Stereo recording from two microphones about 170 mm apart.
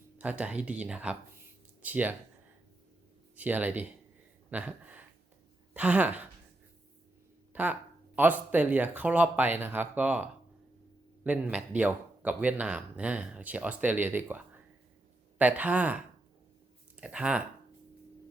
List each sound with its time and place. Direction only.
0.2 s speech: 10° right (ahead or behind)
3.3 s speech: 10° right (ahead or behind)
7.5 s speech: 10° right (ahead or behind)
17.0 s speech: 5° right (ahead or behind)